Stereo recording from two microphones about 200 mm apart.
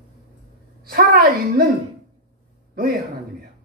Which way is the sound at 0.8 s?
50° right (ahead or behind).